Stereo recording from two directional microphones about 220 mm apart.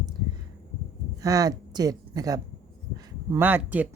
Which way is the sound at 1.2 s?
15° right (ahead or behind).